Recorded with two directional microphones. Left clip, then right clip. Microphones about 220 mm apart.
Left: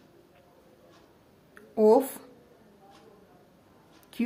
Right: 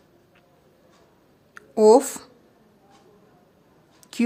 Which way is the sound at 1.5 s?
40° right (ahead or behind).